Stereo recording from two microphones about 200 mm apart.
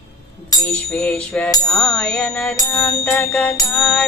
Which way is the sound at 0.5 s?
20° left (ahead or behind).